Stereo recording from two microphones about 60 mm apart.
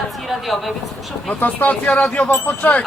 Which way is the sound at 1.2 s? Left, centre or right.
Left.